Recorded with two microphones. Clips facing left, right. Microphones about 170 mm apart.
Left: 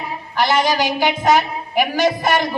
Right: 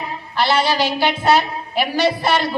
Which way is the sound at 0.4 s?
15° left (ahead or behind).